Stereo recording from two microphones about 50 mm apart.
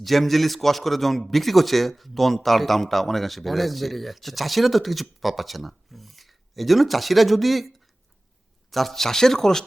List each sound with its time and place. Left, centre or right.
0.0 s a man's voice: centre
8.7 s speech: centre